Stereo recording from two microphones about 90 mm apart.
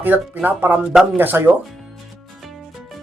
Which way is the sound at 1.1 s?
20° right (ahead or behind).